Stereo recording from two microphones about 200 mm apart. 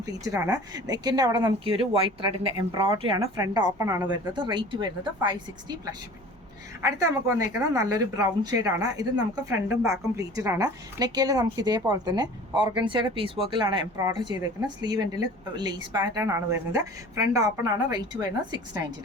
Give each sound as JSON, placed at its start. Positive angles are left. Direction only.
{"t": 0.0, "sound": "a woman's voice", "side_deg": -15}